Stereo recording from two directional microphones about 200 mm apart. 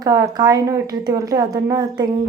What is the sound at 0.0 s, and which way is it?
A woman's voice, 20° right (ahead or behind).